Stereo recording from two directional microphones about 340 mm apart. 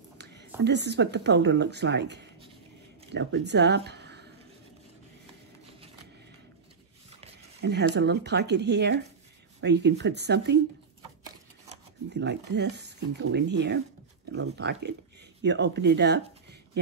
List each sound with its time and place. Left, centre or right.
0.2 s whispering: right
0.7 s speech: right
7.6 s speech: right
12.1 s speech: right